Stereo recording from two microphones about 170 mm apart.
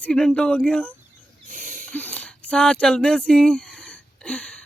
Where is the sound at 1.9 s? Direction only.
10° left (ahead or behind).